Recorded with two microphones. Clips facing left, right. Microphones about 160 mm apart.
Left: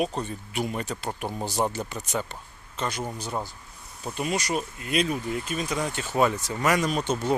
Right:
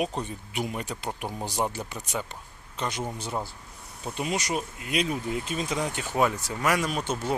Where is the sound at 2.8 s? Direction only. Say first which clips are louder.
Left 1 dB; 20° right (ahead or behind).